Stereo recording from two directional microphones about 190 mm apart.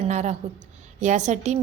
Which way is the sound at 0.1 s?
35° right (ahead or behind).